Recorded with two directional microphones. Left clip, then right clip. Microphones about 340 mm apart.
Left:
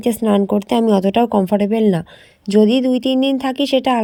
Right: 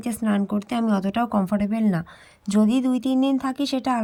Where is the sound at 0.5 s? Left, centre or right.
Centre.